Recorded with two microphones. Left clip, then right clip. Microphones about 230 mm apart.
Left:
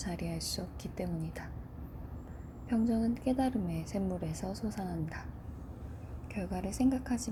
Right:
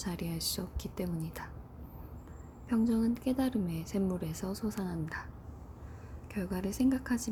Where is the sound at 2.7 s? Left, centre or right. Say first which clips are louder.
Right 1 dB; centre.